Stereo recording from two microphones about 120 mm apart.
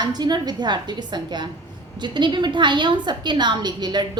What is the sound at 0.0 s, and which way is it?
A woman's voice, 35° right (ahead or behind).